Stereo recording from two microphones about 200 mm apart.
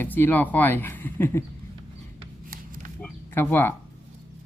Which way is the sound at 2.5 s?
45° right (ahead or behind).